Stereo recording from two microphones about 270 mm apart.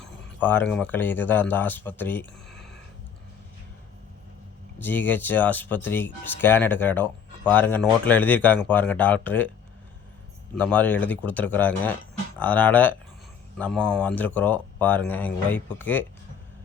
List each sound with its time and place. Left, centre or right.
0.0 s speech: centre
4.8 s speech: centre
10.6 s speech: centre